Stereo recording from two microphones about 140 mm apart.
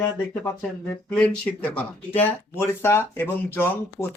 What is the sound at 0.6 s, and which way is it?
Speech, 5° left (ahead or behind).